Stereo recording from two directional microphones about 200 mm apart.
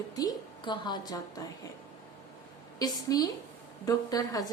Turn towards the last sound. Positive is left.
turn(degrees=20)  # may be behind; listen again after turning